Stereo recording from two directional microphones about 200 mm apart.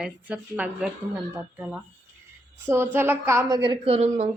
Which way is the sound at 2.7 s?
10° right (ahead or behind).